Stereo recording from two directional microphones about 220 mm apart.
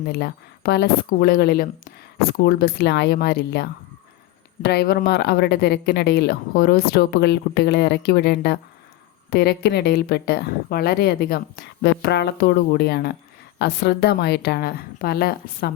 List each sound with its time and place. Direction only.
0.1 s a woman's voice: 50° left (ahead or behind)